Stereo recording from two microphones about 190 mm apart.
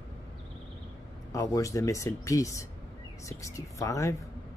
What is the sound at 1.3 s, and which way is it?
Speech, 15° left (ahead or behind).